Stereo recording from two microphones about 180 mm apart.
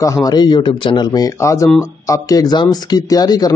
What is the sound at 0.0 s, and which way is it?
A man's voice, 20° left (ahead or behind).